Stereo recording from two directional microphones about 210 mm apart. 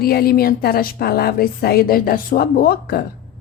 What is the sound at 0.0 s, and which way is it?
A woman's voice, 45° left (ahead or behind).